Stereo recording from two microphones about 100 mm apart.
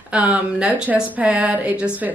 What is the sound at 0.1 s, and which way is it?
A woman's voice, 10° right (ahead or behind).